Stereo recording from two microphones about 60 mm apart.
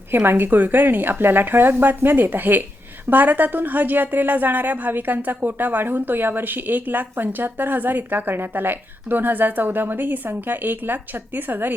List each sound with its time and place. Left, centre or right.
0.1 s a woman's voice: right